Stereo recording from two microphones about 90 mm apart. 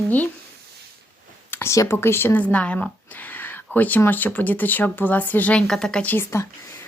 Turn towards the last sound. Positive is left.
turn(degrees=30)  # may be behind; listen again after turning